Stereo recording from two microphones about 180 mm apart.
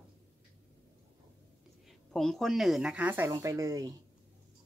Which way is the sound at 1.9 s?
Centre (ahead or behind).